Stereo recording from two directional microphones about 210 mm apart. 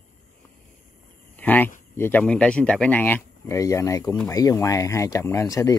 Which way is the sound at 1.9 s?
10° left (ahead or behind).